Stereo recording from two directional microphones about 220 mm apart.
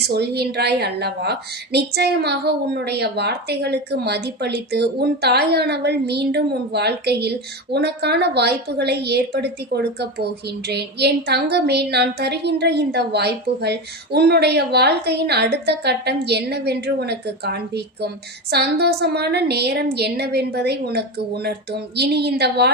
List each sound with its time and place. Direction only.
0.0 s a woman's voice: 50° right (ahead or behind)